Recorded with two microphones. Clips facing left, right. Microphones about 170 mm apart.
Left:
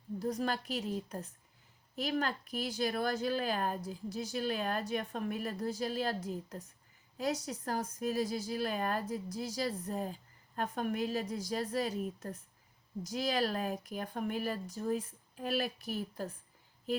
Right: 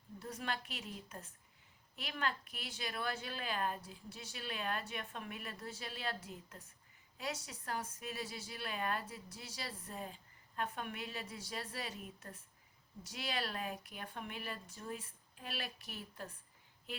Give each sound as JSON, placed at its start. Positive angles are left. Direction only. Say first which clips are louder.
{"t": 0.2, "sound": "speech", "louder": "left 8 dB", "side_deg": 40}